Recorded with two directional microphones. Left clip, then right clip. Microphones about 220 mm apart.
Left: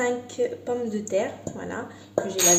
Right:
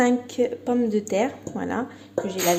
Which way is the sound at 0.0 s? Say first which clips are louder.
Right 3 dB; 35° right (ahead or behind).